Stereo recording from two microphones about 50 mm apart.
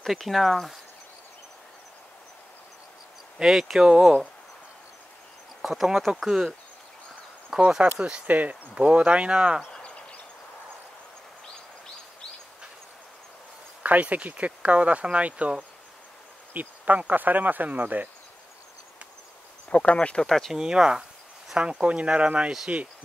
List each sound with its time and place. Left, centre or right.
0.0 s speech: centre
3.3 s speech: centre
5.6 s speech: centre
7.8 s speech: right
9.7 s a sound: left
13.8 s speech: right
19.7 s speech: left
20.2 s speech: centre
20.5 s speech: centre